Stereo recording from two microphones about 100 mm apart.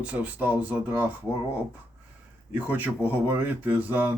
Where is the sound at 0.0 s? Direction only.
15° right (ahead or behind).